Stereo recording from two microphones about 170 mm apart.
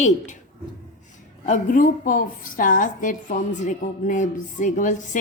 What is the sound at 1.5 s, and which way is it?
A woman's voice, 50° left (ahead or behind).